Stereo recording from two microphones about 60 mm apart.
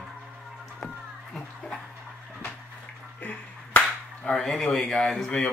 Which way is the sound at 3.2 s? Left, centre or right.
Left.